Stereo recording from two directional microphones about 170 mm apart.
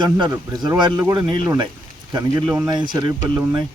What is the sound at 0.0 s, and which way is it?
Speech, 25° right (ahead or behind).